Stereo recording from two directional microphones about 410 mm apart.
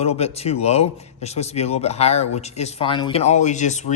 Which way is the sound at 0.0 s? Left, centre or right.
Centre.